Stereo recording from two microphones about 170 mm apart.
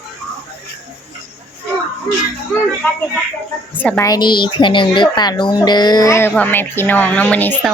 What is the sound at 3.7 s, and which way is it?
Speech, 10° left (ahead or behind).